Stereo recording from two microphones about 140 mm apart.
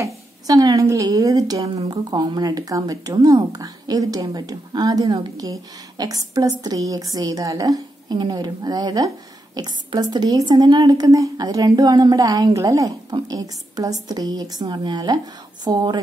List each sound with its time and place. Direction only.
0.0 s speech: 25° right (ahead or behind)